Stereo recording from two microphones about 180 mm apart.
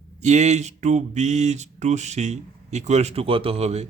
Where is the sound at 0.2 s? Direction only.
40° right (ahead or behind).